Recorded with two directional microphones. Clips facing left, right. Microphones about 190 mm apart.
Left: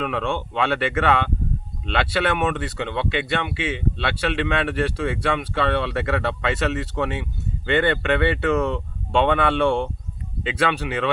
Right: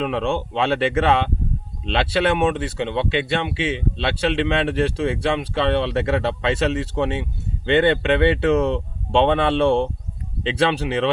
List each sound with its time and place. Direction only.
0.0 s speech: 25° right (ahead or behind)